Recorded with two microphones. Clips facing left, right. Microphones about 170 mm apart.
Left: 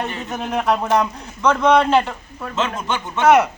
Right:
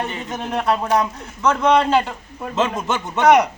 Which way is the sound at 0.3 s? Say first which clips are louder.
Left 1 dB; centre (ahead or behind).